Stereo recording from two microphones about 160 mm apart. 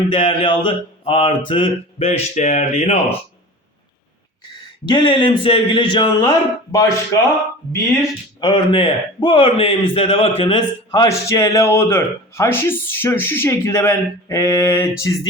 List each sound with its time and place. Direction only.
0.1 s mantra: 30° left (ahead or behind)
4.9 s mantra: 30° left (ahead or behind)
6.2 s a man's voice: 20° left (ahead or behind)
8.4 s a man's voice: 30° left (ahead or behind)